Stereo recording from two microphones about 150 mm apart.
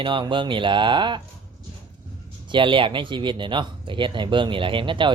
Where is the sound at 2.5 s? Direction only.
35° right (ahead or behind).